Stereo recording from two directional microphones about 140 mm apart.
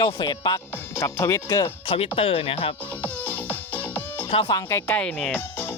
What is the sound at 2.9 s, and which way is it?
Music, 10° left (ahead or behind).